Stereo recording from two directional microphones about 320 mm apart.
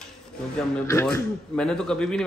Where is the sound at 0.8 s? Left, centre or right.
Centre.